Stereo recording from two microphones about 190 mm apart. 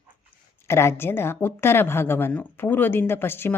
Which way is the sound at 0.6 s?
15° left (ahead or behind).